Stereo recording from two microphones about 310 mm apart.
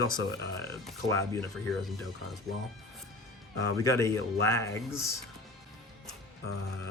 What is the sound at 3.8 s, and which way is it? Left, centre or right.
Speech, centre.